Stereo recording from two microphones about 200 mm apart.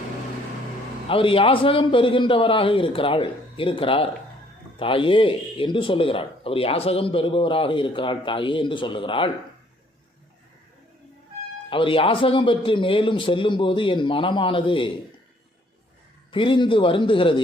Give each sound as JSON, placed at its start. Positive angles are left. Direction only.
{"t": 1.0, "sound": "speech", "side_deg": 25}
{"t": 11.7, "sound": "speech", "side_deg": 25}
{"t": 16.3, "sound": "speech", "side_deg": 25}